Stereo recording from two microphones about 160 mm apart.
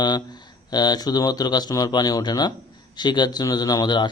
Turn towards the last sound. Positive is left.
turn(degrees=30)  # may be behind; listen again after turning